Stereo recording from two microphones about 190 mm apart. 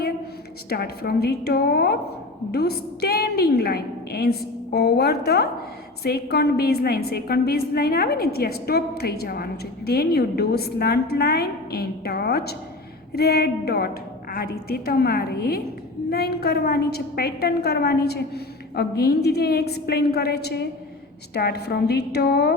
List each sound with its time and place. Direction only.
0.7 s a woman's voice: 55° left (ahead or behind)